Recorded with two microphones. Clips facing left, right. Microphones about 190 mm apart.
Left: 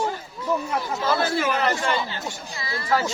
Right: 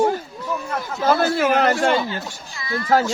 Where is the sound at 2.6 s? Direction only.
30° left (ahead or behind).